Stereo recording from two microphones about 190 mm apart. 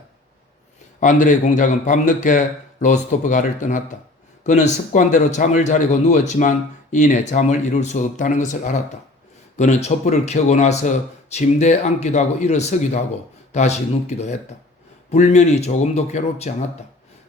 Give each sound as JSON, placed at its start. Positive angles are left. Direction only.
{"t": 0.9, "sound": "speech", "side_deg": 40}